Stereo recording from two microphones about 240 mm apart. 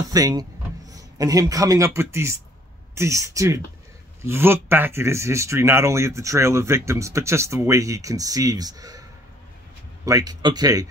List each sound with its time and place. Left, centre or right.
0.1 s speech: centre
10.0 s speech: centre